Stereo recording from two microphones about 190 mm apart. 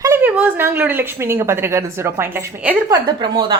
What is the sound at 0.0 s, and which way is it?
A woman's voice, 10° right (ahead or behind).